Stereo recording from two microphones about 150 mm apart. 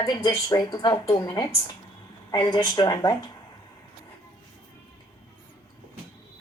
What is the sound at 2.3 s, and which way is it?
Speech, 30° left (ahead or behind).